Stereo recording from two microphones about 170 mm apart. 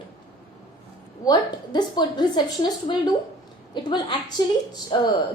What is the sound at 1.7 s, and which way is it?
A woman's voice, 25° left (ahead or behind).